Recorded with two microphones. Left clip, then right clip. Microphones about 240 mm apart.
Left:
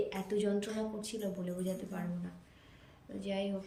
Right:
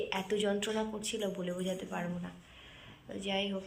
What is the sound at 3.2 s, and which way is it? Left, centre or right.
Speech, centre.